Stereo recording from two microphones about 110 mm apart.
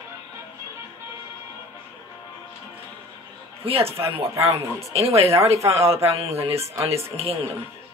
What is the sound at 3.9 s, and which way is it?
Speech, 25° right (ahead or behind).